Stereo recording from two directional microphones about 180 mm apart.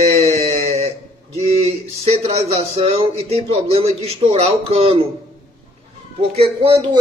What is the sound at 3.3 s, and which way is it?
Speech, 35° right (ahead or behind).